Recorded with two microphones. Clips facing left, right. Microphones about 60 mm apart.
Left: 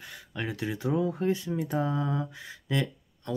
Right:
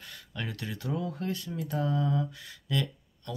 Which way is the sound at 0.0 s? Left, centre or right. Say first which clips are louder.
Left 3 dB; centre.